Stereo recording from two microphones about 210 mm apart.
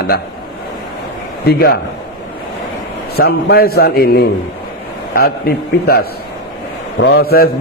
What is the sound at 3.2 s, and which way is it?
A man's voice, 45° left (ahead or behind).